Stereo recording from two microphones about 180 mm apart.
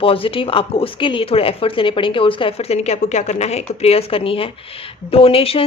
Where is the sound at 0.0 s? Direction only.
30° left (ahead or behind).